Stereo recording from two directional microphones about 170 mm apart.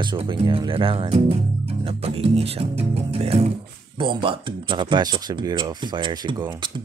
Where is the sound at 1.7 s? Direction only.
35° right (ahead or behind).